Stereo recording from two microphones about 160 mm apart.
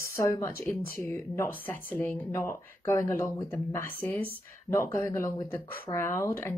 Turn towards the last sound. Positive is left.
turn(degrees=15)  # may be behind; listen again after turning